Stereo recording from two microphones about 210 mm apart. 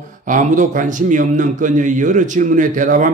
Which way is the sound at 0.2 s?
40° right (ahead or behind).